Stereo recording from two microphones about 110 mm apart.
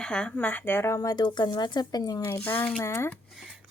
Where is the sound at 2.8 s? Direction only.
25° left (ahead or behind).